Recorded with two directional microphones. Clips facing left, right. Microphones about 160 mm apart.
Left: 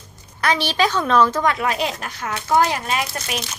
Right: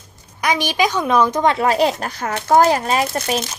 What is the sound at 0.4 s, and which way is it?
A woman's voice, 15° right (ahead or behind).